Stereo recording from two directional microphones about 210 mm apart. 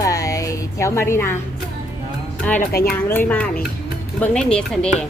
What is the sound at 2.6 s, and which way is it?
Speech, 45° left (ahead or behind).